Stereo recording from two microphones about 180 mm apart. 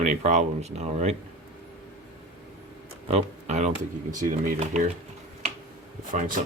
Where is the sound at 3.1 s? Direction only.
35° right (ahead or behind).